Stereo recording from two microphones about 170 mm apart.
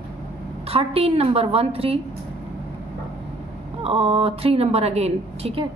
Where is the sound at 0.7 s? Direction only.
35° right (ahead or behind).